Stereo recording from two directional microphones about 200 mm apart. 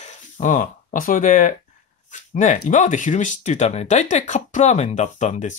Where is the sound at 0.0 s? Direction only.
35° left (ahead or behind).